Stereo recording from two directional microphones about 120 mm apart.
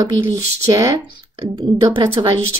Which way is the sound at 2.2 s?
45° right (ahead or behind).